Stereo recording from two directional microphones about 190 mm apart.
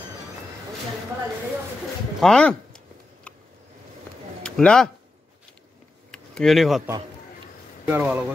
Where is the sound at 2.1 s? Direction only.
5° left (ahead or behind).